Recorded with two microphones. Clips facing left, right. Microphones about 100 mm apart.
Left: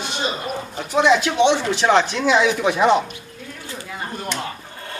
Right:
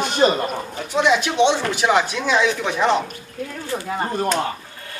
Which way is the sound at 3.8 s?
45° right (ahead or behind).